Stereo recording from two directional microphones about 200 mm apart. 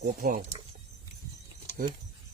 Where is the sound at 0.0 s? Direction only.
50° right (ahead or behind).